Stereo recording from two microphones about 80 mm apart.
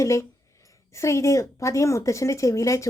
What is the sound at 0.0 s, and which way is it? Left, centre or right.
Speech, left.